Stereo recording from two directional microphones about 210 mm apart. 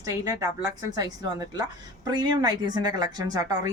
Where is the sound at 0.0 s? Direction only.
15° right (ahead or behind).